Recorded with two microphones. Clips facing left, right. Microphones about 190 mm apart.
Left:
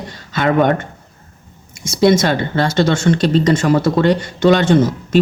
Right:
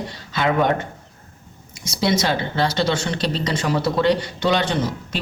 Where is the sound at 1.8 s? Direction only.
50° left (ahead or behind).